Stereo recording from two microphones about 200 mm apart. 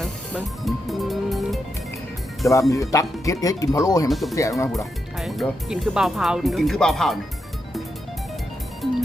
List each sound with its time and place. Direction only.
0.0 s music: centre (ahead or behind)
2.5 s speech: 15° left (ahead or behind)
4.1 s speech: centre (ahead or behind)
8.8 s music: centre (ahead or behind)